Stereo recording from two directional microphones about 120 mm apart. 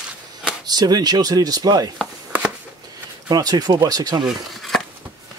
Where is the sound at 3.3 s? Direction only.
35° right (ahead or behind).